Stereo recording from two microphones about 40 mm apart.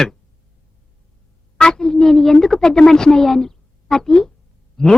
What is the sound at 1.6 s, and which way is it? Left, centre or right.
A man's voice, centre.